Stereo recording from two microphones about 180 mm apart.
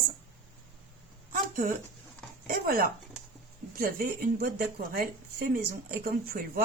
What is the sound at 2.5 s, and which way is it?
Speech, 55° right (ahead or behind).